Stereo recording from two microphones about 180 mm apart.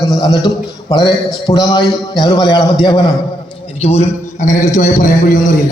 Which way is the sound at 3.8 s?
40° left (ahead or behind).